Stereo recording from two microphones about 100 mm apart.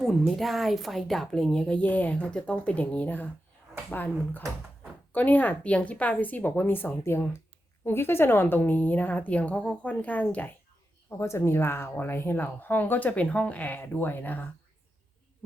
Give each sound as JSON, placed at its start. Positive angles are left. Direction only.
{"t": 0.0, "sound": "a woman's voice", "side_deg": 0}
{"t": 11.2, "sound": "speech", "side_deg": 25}